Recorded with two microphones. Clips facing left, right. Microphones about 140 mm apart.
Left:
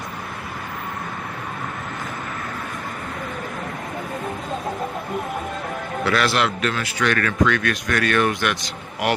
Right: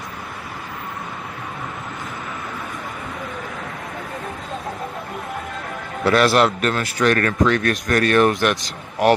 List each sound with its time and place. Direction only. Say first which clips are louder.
6.1 s speech: right 6 dB; 40° right (ahead or behind)